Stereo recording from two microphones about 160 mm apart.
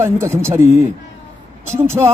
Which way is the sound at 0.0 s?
15° right (ahead or behind).